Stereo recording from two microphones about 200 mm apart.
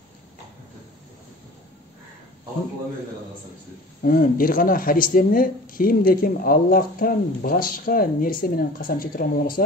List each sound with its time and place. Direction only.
4.0 s speech: 45° left (ahead or behind)